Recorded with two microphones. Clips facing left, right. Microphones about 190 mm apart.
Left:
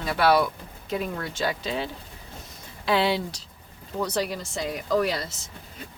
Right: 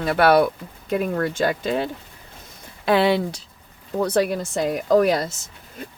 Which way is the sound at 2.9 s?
55° right (ahead or behind).